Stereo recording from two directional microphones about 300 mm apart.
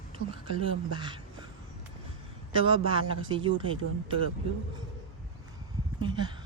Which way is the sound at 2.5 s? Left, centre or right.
Centre.